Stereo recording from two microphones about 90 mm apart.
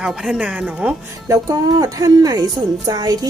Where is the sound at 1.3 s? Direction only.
40° right (ahead or behind).